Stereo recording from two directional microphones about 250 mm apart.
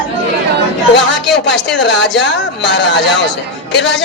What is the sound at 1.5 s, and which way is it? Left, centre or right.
A man's voice, left.